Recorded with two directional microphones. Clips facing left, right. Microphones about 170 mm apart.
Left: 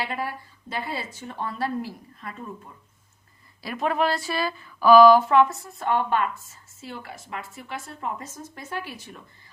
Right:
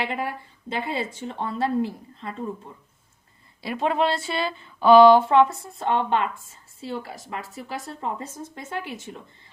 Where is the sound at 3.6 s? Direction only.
20° right (ahead or behind).